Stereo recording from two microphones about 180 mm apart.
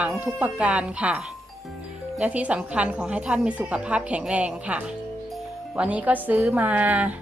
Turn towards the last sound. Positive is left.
turn(degrees=-10)  # may be behind; listen again after turning